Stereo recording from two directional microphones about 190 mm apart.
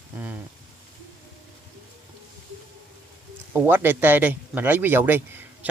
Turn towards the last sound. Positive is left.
turn(degrees=-10)  # may be behind; listen again after turning